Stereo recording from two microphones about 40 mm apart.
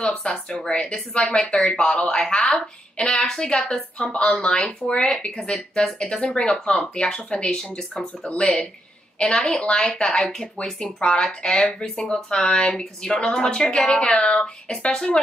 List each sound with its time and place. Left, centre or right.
0.0 s a woman's voice: left
6.2 s a woman's voice: left